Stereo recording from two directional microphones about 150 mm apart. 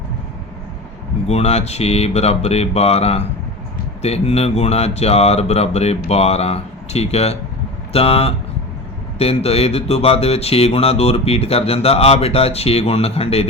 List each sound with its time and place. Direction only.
1.3 s speech: 45° left (ahead or behind)